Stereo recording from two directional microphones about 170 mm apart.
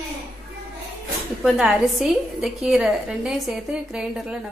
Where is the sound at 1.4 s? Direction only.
Centre (ahead or behind).